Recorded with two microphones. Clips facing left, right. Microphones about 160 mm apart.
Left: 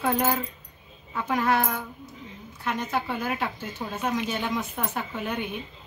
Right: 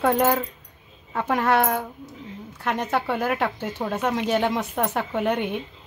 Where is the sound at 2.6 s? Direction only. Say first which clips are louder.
Right 4 dB; 70° right (ahead or behind).